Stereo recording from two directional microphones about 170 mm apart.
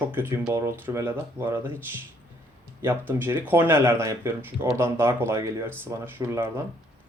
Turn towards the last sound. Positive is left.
turn(degrees=-15)  # may be behind; listen again after turning